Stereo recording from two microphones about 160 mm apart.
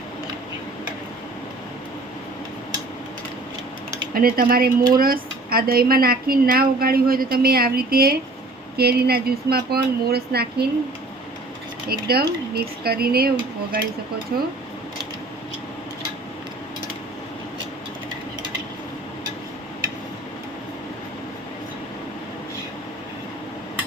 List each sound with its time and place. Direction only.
4.1 s speech: 65° right (ahead or behind); by 10.7 s 80° right
11.9 s speech: 75° right (ahead or behind)